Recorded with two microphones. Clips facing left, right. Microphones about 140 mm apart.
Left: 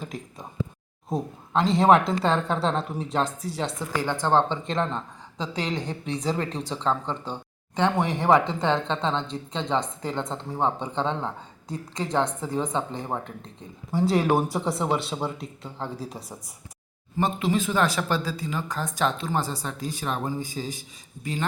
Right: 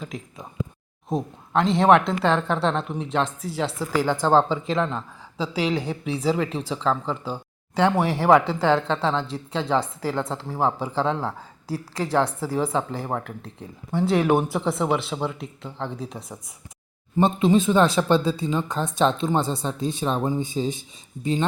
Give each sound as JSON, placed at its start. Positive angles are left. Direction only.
{"t": 0.0, "sound": "a sound", "side_deg": 0}
{"t": 1.1, "sound": "a woman's voice", "side_deg": 0}
{"t": 17.2, "sound": "speech", "side_deg": -25}